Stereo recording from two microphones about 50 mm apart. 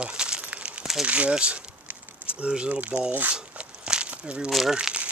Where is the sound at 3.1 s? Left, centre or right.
Right.